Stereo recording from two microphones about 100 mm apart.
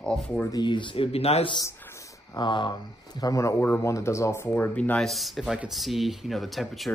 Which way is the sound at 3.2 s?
35° left (ahead or behind).